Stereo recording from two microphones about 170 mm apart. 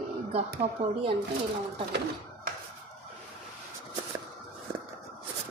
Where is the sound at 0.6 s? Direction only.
30° right (ahead or behind).